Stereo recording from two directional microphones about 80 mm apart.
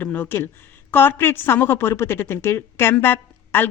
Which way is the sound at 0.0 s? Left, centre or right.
Left.